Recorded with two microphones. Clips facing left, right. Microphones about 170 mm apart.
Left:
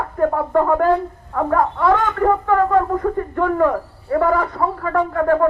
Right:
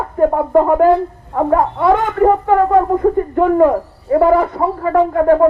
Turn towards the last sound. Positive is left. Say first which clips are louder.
# right 5 dB
turn(degrees=-20)  # may be behind; listen again after turning